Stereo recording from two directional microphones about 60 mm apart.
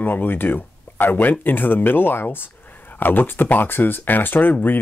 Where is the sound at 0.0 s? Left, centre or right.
Left.